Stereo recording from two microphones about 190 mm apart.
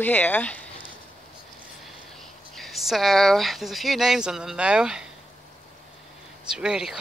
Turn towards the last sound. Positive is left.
turn(degrees=-5)  # may be behind; listen again after turning